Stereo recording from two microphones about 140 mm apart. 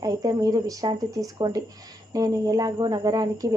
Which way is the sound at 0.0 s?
25° right (ahead or behind).